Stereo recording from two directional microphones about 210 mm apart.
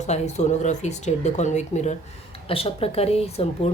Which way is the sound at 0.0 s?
35° left (ahead or behind).